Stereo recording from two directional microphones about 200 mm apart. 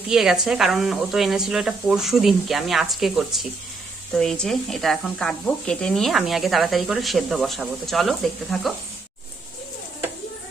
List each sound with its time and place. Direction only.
0.1 s speech: centre (ahead or behind)